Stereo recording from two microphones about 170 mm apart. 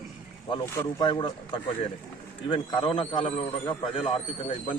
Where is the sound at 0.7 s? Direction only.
15° left (ahead or behind).